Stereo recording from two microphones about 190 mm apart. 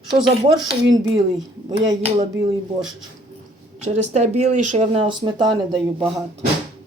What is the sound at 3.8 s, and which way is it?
Speech, 35° right (ahead or behind).